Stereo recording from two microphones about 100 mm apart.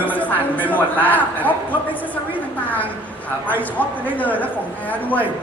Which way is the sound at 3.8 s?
15° left (ahead or behind).